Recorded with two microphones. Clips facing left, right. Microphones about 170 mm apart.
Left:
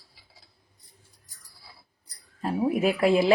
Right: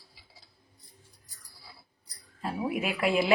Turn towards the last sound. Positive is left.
turn(degrees=35)  # may be behind; listen again after turning